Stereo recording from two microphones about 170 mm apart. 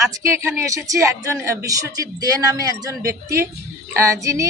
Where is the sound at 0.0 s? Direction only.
20° right (ahead or behind).